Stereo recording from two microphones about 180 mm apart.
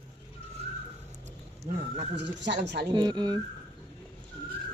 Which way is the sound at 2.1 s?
70° right (ahead or behind).